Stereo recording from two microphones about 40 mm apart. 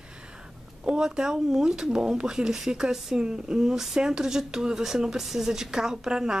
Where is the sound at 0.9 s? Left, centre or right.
Centre.